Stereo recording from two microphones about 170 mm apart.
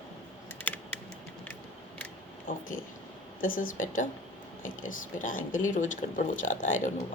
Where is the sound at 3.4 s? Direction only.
55° left (ahead or behind).